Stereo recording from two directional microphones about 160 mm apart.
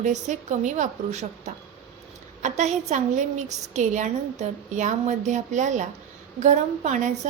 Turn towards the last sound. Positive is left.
turn(degrees=-50)  # may be behind; listen again after turning